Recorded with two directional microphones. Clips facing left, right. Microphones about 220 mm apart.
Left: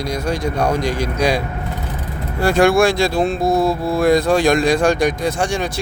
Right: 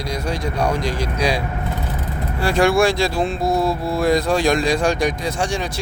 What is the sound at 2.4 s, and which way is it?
Speech, 50° left (ahead or behind).